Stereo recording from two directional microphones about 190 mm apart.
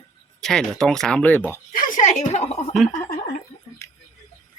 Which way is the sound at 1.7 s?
40° left (ahead or behind).